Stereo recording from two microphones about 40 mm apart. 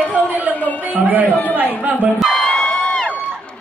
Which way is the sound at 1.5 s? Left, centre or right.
Right.